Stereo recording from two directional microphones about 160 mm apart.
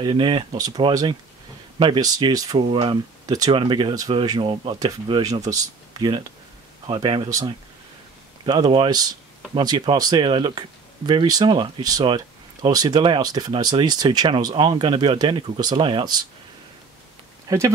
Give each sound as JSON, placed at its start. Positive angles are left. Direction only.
{"t": 0.0, "sound": "speech", "side_deg": -30}
{"t": 17.5, "sound": "speech", "side_deg": -20}